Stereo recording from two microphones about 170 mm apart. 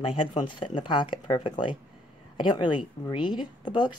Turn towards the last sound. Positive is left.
turn(degrees=25)  # may be behind; listen again after turning